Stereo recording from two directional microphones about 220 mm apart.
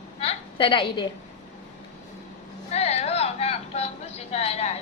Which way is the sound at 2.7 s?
30° left (ahead or behind).